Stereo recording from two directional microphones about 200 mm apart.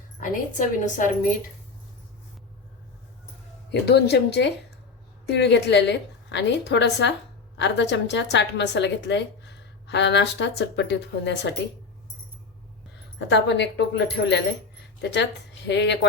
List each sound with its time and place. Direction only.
0.2 s a woman's voice: 40° left (ahead or behind)
3.7 s a woman's voice: 55° left (ahead or behind)
13.1 s a woman's voice: 60° left (ahead or behind)